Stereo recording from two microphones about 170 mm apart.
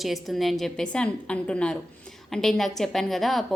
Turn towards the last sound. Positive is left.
turn(degrees=0)  # may be behind; listen again after turning